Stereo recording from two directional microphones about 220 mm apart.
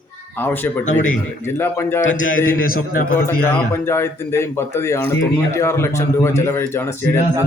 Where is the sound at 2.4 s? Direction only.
40° left (ahead or behind).